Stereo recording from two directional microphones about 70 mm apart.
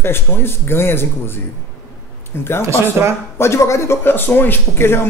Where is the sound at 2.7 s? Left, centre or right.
Right.